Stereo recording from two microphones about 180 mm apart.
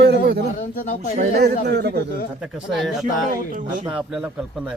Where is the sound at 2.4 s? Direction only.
5° right (ahead or behind).